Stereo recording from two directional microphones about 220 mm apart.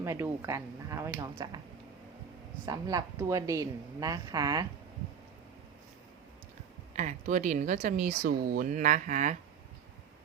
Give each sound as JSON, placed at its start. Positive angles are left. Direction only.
{"t": 0.0, "sound": "a woman's voice", "side_deg": -10}
{"t": 2.6, "sound": "a woman's voice", "side_deg": -15}
{"t": 6.9, "sound": "speech", "side_deg": -35}